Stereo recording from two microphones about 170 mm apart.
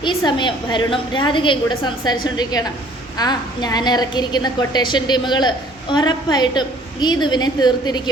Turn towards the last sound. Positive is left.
turn(degrees=25)  # may be behind; listen again after turning